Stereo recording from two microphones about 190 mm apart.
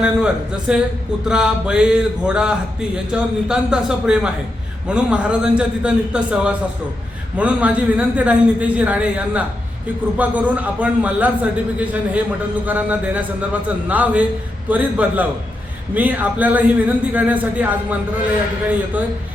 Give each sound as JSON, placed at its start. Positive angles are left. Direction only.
{"t": 0.0, "sound": "a man's voice", "side_deg": -5}